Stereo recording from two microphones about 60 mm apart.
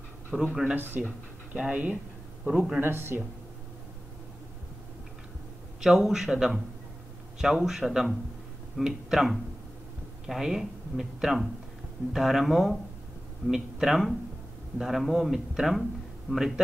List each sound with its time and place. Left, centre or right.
0.3 s a man's voice: centre
2.8 s speech: right
5.8 s a man's voice: centre